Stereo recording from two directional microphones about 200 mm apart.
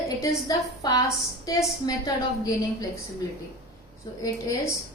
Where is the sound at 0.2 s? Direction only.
20° left (ahead or behind).